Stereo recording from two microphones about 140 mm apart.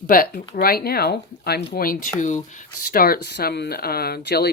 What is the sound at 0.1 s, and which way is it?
Speech, 90° left.